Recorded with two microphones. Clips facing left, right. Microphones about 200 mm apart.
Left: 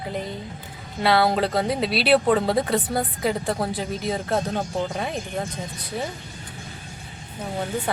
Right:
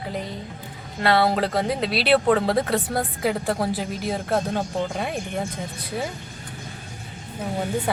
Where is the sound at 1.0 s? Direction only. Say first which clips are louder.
Even; centre (ahead or behind).